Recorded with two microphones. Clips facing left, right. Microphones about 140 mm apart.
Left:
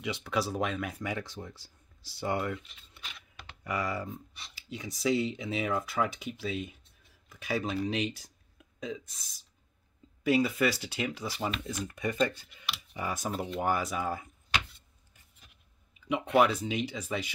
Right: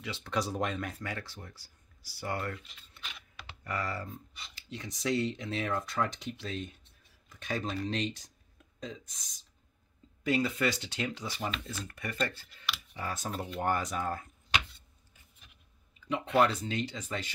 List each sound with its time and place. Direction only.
0.0 s speech: 15° left (ahead or behind)
1.0 s speech: 20° left (ahead or behind)
16.1 s speech: 15° left (ahead or behind)